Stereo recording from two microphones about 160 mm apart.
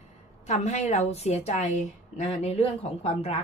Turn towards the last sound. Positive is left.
turn(degrees=40)  # may be behind; listen again after turning